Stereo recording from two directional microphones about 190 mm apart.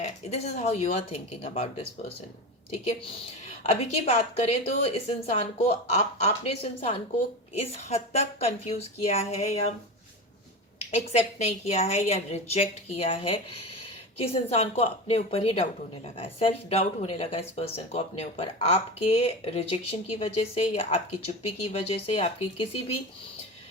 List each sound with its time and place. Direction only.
0.0 s a woman's voice: 35° left (ahead or behind)
10.9 s speech: 35° left (ahead or behind)